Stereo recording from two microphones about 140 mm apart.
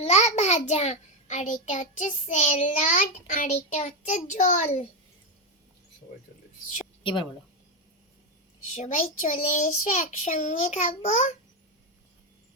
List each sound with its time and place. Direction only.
0.0 s a child's voice: 55° left (ahead or behind)
7.0 s a woman's voice: 35° left (ahead or behind)
8.7 s a child's voice: 55° left (ahead or behind)